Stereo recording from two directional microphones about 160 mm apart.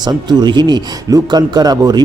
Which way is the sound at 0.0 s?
25° right (ahead or behind).